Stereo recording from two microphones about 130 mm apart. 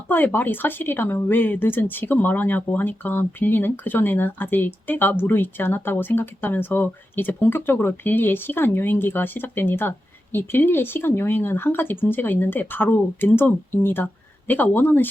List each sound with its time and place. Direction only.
0.1 s speech: 15° left (ahead or behind)